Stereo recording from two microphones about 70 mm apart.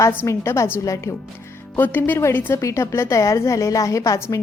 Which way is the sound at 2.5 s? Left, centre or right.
Left.